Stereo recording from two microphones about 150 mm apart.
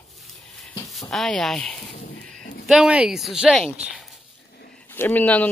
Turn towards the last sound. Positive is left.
turn(degrees=10)  # may be behind; listen again after turning